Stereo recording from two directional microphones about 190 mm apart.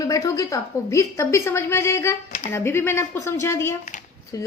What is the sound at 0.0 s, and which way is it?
A woman's voice, 20° left (ahead or behind).